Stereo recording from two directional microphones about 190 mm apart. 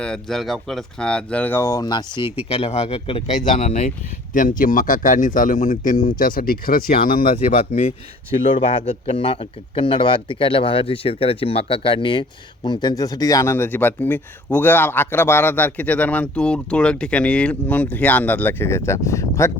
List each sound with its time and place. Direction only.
0.0 s speech: 5° left (ahead or behind); by 2.2 s 20° left (ahead or behind)
2.2 s speech: 10° right (ahead or behind)
2.5 s speech: 30° left (ahead or behind)
8.3 s speech: 30° left (ahead or behind)